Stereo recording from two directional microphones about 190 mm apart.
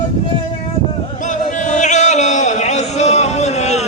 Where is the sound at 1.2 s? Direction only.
40° left (ahead or behind).